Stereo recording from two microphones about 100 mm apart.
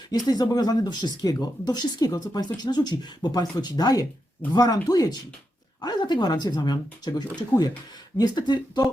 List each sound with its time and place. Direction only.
0.1 s speech: 40° left (ahead or behind)